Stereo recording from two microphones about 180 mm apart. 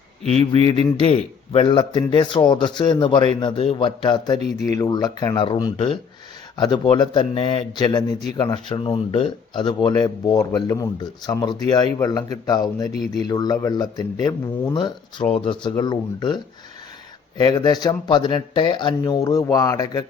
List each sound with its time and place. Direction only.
0.6 s speech: 25° left (ahead or behind)